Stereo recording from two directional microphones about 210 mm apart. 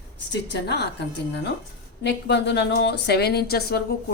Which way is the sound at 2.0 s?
55° left (ahead or behind).